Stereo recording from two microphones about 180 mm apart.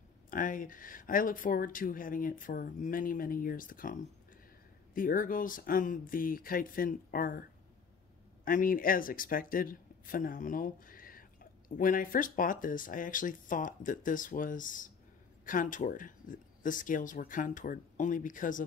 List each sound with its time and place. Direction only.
0.3 s speech: 50° left (ahead or behind)
8.5 s speech: 50° left (ahead or behind)